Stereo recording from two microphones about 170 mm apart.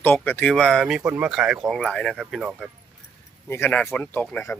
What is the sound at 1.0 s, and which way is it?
Speech, 15° right (ahead or behind).